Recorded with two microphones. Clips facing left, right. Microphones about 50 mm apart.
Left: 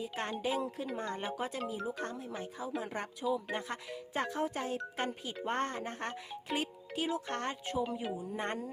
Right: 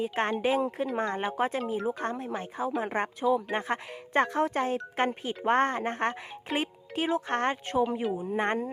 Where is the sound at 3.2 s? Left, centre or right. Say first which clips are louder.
Right 7 dB; right.